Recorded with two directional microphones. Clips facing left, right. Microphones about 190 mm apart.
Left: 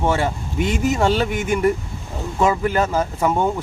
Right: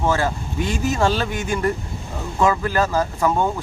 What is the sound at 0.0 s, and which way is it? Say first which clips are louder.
Speech: left 1 dB; 25° left (ahead or behind).